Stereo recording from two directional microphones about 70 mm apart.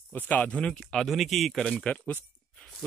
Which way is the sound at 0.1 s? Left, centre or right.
Left.